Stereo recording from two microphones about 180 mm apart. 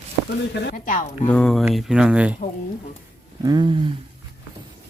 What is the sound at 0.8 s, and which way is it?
Speech, 50° left (ahead or behind).